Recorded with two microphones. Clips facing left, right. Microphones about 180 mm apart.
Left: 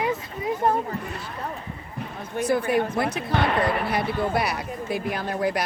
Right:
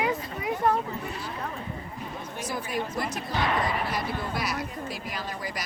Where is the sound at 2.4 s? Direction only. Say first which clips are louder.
Left 10 dB; 60° left (ahead or behind).